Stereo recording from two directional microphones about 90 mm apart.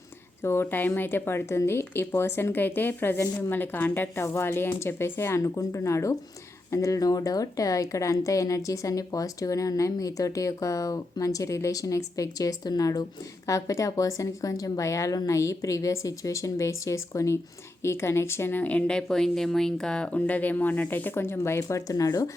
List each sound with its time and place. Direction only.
0.4 s a woman's voice: 25° left (ahead or behind)